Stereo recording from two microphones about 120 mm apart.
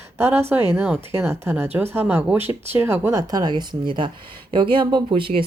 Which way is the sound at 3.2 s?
35° right (ahead or behind).